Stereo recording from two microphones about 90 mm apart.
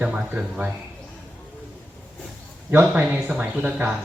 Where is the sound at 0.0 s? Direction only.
15° right (ahead or behind).